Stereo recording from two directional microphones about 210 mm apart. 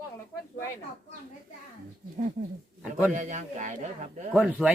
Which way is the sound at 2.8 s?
5° right (ahead or behind).